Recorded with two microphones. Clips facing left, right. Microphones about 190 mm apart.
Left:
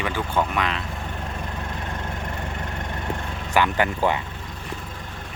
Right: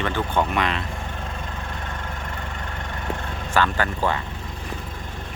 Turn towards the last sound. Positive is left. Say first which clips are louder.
# left 2 dB
turn(degrees=15)  # may be behind; listen again after turning